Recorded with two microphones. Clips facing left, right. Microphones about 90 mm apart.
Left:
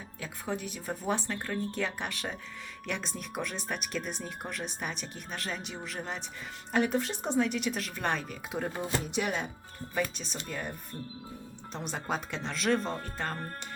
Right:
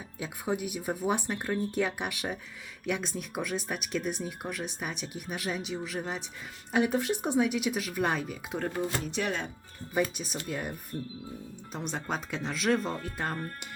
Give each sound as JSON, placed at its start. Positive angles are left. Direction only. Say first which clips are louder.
{"t": 0.2, "sound": "speech", "louder": "right 4 dB", "side_deg": -15}
{"t": 8.5, "sound": "speech", "louder": "right 1 dB", "side_deg": 10}
{"t": 9.9, "sound": "speech", "louder": "right 3 dB", "side_deg": -15}
{"t": 11.7, "sound": "speech", "louder": "even", "side_deg": 0}
{"t": 12.9, "sound": "speech", "louder": "right 1 dB", "side_deg": 35}